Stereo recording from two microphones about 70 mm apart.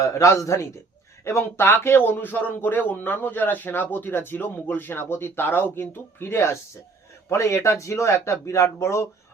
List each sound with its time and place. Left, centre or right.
0.0 s a man's voice: left